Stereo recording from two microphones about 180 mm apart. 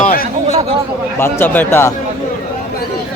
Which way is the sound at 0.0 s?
55° left (ahead or behind).